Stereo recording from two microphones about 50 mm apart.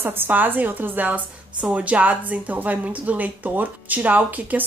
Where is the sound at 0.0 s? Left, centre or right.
Right.